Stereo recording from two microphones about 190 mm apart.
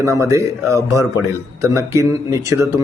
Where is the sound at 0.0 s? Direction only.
15° right (ahead or behind).